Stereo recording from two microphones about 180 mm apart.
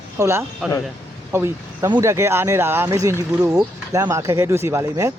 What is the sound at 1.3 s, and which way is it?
Speech, 15° right (ahead or behind).